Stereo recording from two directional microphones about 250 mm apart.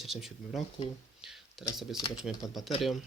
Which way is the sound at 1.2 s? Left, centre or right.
Centre.